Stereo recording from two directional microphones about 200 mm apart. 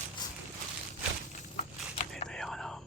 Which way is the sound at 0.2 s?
20° left (ahead or behind).